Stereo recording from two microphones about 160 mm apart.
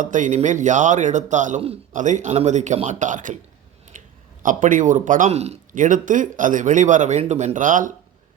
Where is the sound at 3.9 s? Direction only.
55° right (ahead or behind).